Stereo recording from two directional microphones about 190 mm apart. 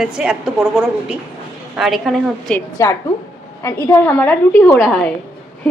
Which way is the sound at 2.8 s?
15° left (ahead or behind).